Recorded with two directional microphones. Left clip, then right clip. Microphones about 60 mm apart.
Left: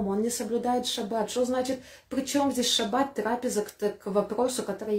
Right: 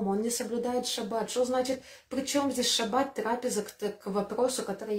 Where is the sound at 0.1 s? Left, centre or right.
Right.